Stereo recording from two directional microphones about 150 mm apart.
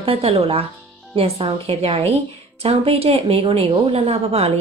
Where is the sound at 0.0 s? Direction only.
40° right (ahead or behind).